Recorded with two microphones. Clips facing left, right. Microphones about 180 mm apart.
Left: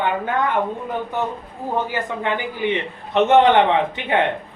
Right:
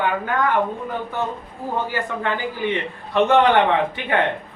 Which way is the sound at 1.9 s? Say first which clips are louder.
Left 1 dB; 20° left (ahead or behind).